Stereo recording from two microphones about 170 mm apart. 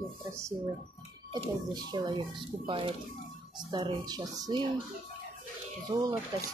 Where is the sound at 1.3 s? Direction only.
25° right (ahead or behind).